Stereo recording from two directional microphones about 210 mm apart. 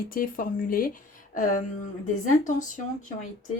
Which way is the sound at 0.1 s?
40° left (ahead or behind).